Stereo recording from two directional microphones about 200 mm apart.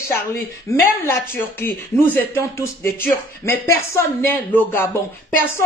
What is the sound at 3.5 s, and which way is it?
A woman's voice, 10° left (ahead or behind).